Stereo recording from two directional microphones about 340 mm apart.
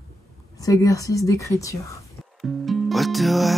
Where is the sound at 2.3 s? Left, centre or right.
Centre.